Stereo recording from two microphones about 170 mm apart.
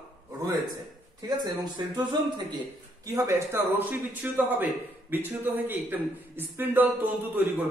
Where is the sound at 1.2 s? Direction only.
25° right (ahead or behind).